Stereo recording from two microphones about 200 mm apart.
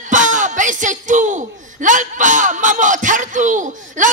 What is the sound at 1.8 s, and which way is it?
Speech, 40° right (ahead or behind).